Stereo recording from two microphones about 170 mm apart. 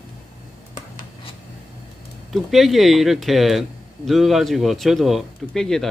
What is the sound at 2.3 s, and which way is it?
Speech, centre (ahead or behind).